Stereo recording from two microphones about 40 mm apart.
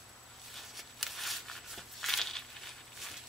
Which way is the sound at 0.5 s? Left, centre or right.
Centre.